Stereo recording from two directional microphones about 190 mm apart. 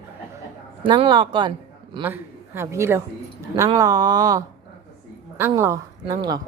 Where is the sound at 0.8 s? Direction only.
25° right (ahead or behind).